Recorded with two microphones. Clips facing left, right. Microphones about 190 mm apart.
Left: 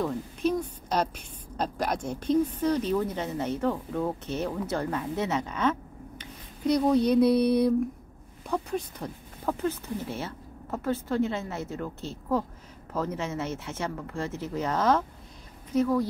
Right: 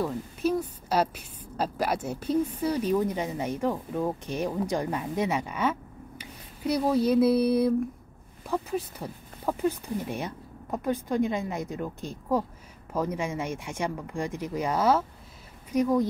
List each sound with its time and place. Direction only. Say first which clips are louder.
0.0 s a woman's voice: even; 5° right (ahead or behind)